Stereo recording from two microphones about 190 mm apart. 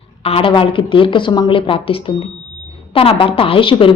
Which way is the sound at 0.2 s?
30° left (ahead or behind).